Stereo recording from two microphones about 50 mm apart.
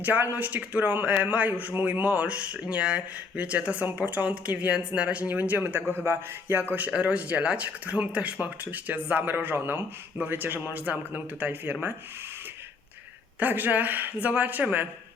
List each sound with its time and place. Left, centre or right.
0.0 s a man's voice: right
5.9 s speech: right
6.7 s a man's voice: right
13.4 s speech: right